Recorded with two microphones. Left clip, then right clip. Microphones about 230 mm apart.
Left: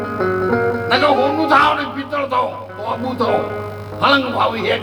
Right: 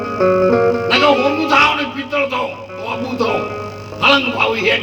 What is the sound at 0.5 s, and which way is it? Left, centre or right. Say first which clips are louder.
Music: right 4 dB; right.